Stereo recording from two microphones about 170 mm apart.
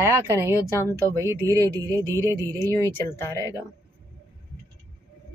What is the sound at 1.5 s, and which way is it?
Music, 20° right (ahead or behind).